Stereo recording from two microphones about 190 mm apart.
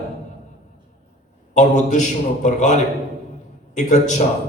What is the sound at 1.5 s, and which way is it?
Speech, 40° left (ahead or behind).